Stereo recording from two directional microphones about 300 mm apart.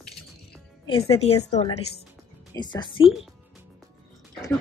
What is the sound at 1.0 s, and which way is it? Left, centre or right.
Speech, centre.